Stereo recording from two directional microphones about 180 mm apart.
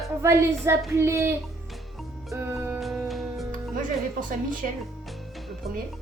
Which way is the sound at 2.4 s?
15° right (ahead or behind).